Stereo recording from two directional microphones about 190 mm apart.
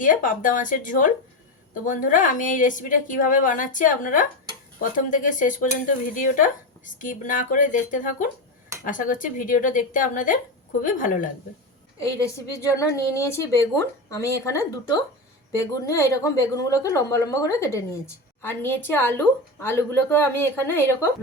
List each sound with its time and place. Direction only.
0.0 s dishes: 45° left (ahead or behind)
11.9 s a woman's voice: 15° left (ahead or behind)